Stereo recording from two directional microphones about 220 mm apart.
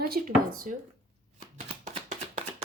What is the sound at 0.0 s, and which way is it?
Speech, 40° right (ahead or behind).